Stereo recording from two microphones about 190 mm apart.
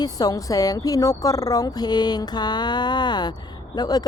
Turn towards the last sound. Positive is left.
turn(degrees=20)  # may be behind; listen again after turning